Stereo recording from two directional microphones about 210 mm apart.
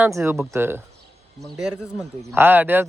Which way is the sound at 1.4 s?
Centre (ahead or behind).